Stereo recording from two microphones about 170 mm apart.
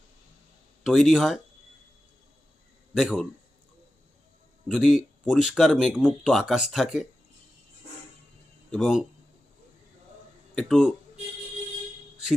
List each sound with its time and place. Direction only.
0.9 s speech: centre (ahead or behind)
2.9 s speech: centre (ahead or behind)
4.7 s speech: centre (ahead or behind)
8.7 s speech: 5° right (ahead or behind)
10.5 s speech: centre (ahead or behind)